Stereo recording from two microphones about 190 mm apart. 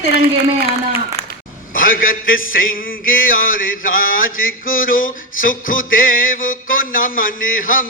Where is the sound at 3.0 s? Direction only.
45° left (ahead or behind).